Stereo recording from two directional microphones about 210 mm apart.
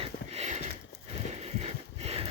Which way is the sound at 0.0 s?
30° right (ahead or behind).